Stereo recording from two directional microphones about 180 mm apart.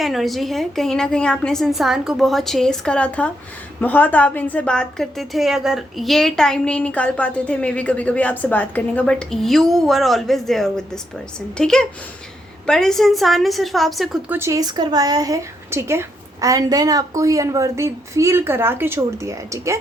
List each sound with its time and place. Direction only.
0.0 s a woman's voice: centre (ahead or behind)
14.3 s speech: 15° right (ahead or behind)